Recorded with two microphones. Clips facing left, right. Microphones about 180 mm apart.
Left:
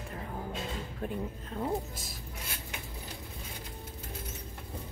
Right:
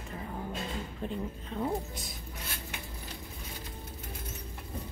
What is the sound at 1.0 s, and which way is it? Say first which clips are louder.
Speech: left 1 dB; 5° left (ahead or behind).